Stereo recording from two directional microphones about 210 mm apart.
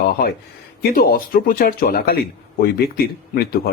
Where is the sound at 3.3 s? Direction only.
45° left (ahead or behind).